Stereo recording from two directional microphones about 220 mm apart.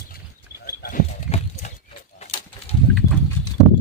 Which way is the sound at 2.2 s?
30° left (ahead or behind).